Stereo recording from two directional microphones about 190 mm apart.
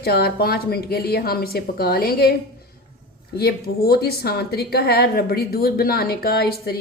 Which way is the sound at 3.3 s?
55° left (ahead or behind).